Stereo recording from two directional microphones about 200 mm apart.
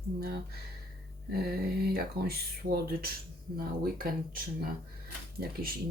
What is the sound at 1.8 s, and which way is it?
Speech, 50° right (ahead or behind).